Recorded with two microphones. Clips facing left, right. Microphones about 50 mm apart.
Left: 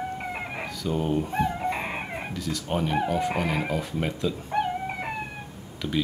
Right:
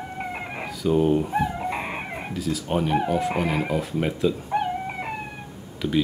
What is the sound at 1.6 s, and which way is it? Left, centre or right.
Speech, centre.